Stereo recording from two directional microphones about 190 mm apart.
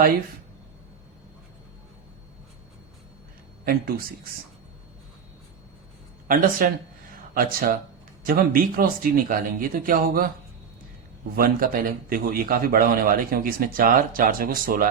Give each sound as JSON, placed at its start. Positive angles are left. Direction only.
{"t": 3.7, "sound": "a man's voice", "side_deg": -50}
{"t": 6.2, "sound": "a man's voice", "side_deg": -45}
{"t": 11.3, "sound": "a man's voice", "side_deg": -50}